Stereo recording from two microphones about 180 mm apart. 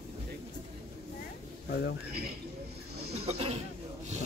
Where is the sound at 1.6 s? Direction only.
65° left (ahead or behind).